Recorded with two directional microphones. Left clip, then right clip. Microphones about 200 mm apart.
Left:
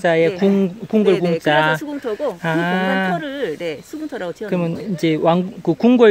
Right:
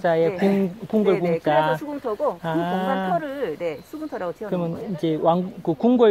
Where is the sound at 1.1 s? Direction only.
55° left (ahead or behind).